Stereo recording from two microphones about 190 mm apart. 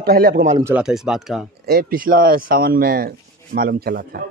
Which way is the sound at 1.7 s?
50° right (ahead or behind).